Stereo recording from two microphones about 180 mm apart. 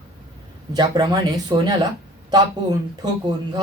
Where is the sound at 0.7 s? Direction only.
20° right (ahead or behind).